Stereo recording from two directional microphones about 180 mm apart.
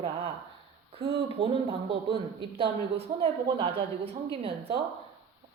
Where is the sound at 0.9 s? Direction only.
30° right (ahead or behind).